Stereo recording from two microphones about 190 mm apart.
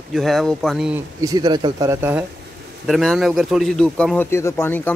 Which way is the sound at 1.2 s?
20° right (ahead or behind).